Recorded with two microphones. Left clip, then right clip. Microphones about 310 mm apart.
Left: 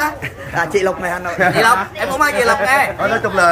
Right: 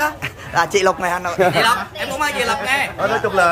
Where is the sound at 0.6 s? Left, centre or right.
Centre.